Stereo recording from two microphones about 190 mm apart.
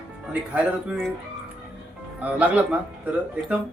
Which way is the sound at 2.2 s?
10° right (ahead or behind).